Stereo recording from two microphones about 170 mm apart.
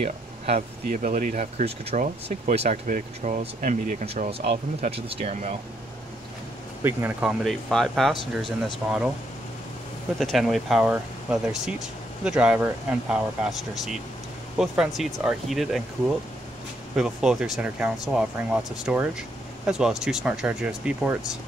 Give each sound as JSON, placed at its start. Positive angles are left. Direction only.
{"t": 0.0, "sound": "speech", "side_deg": -40}
{"t": 6.8, "sound": "speech", "side_deg": -15}
{"t": 7.4, "sound": "speech", "side_deg": 0}
{"t": 10.1, "sound": "speech", "side_deg": 0}
{"t": 16.9, "sound": "speech", "side_deg": -5}